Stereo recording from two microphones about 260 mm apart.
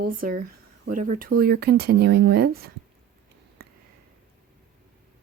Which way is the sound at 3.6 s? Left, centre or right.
Right.